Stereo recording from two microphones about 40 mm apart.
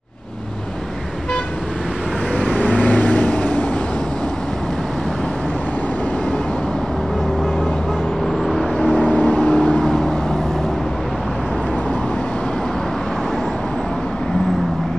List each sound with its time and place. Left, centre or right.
2.4 s vehicle: left
8.8 s vehicle: left
9.6 s vehicle: left